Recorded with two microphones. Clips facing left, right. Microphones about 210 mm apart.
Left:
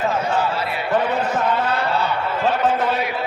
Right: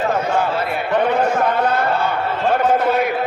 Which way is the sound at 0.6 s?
50° right (ahead or behind).